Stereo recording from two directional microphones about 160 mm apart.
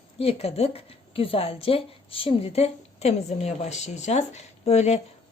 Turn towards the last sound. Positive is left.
turn(degrees=40)  # may be behind; listen again after turning